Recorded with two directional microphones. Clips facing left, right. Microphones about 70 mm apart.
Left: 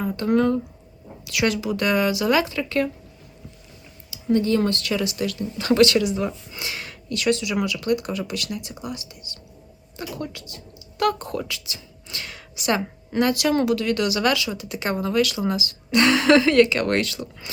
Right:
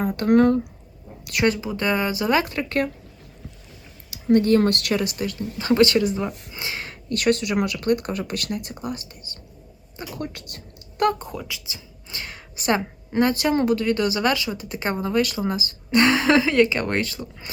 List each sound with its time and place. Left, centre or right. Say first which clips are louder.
0.2 s speech: right 3 dB; right
1.4 s speech: even; right
2.4 s speech: left 1 dB; right
4.3 s speech: right 3 dB; right
5.1 s speech: left 1 dB; right
7.1 s speech: right 1 dB; right
10.2 s a sound: even; right
11.2 s speech: left 4 dB; centre